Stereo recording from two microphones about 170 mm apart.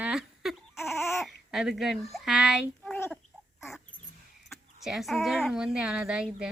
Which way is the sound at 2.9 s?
10° left (ahead or behind).